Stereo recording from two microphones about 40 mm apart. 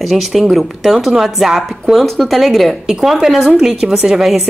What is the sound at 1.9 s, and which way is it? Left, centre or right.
Speech, centre.